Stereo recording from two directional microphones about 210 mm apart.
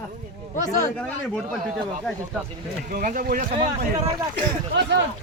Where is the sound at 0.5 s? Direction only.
35° left (ahead or behind).